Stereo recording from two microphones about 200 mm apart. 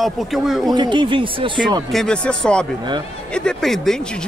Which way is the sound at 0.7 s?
25° right (ahead or behind).